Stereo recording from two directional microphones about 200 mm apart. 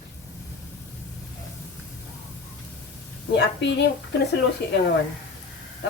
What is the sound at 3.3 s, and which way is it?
Speech, 60° left (ahead or behind).